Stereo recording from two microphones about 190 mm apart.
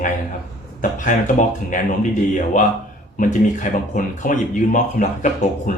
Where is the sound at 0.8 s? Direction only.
45° left (ahead or behind).